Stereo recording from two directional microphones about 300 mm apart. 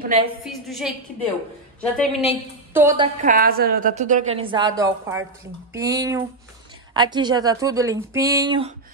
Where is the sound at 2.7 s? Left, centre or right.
Centre.